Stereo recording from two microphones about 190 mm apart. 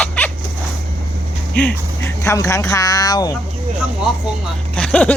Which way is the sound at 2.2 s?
15° left (ahead or behind).